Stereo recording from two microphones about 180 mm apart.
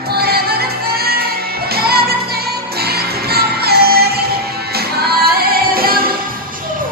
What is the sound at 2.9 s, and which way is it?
Music, 60° right (ahead or behind).